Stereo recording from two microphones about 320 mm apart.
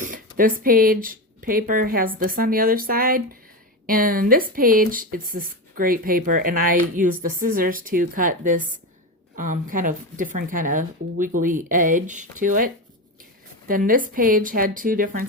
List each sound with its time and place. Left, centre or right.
0.0 s speech: right